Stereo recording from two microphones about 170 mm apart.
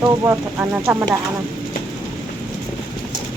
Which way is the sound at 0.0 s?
10° right (ahead or behind).